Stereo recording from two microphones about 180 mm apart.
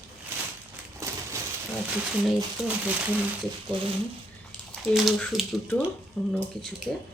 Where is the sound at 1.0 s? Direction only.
15° right (ahead or behind).